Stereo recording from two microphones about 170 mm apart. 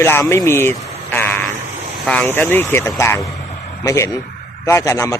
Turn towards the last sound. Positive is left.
turn(degrees=15)  # may be behind; listen again after turning